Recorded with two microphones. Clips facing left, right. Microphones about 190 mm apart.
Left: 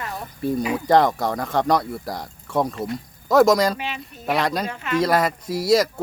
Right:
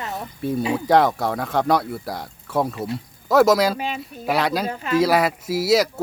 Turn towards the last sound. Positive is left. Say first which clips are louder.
# even
turn(degrees=-5)  # may be behind; listen again after turning